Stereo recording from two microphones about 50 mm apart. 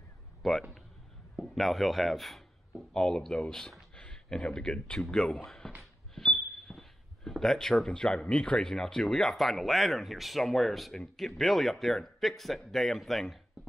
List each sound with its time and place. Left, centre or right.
0.4 s a man's voice: centre
5.8 s speech: centre